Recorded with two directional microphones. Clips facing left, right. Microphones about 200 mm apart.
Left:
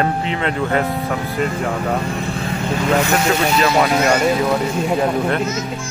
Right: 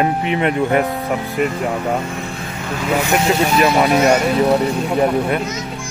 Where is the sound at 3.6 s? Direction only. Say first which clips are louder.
Right 3 dB; 20° right (ahead or behind).